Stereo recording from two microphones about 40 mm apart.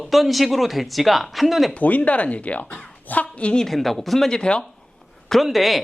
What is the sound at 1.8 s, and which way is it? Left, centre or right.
A woman's voice, left.